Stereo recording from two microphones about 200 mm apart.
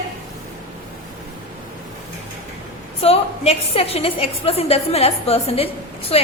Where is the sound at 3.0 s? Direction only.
30° left (ahead or behind).